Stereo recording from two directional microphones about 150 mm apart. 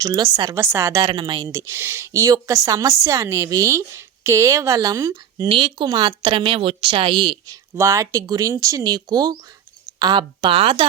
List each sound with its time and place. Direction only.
0.0 s speech: 25° right (ahead or behind)
1.0 s speech: 35° right (ahead or behind)
1.5 s speech: 20° right (ahead or behind)
5.5 s speech: 35° right (ahead or behind)